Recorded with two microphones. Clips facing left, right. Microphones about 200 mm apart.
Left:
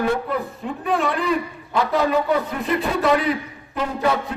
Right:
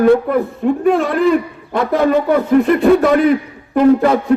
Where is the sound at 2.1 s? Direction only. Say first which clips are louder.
Right 8 dB; 55° right (ahead or behind).